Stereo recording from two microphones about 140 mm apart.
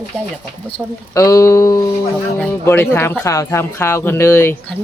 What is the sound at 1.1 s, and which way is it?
Speech, 20° left (ahead or behind).